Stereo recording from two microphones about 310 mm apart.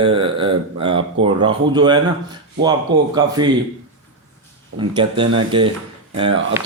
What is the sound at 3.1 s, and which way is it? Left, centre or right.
Speech, centre.